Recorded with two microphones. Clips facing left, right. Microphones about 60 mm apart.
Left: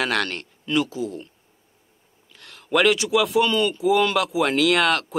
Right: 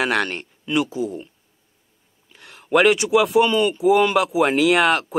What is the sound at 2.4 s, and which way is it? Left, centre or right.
Speech, centre.